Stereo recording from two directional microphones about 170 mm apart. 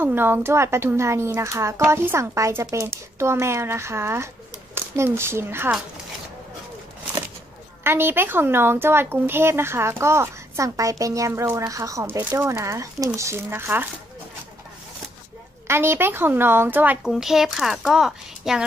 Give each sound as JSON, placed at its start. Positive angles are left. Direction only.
{"t": 0.0, "sound": "speech", "side_deg": -10}
{"t": 7.8, "sound": "speech", "side_deg": -15}
{"t": 15.6, "sound": "speech", "side_deg": -15}